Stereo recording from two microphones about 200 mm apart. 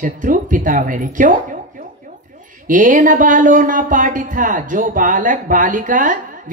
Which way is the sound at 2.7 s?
40° right (ahead or behind).